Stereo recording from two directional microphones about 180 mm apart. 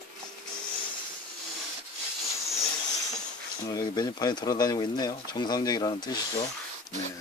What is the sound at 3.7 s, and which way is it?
Speech, 20° left (ahead or behind).